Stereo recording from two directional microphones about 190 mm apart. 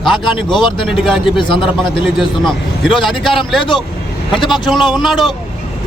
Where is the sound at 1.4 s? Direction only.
25° left (ahead or behind).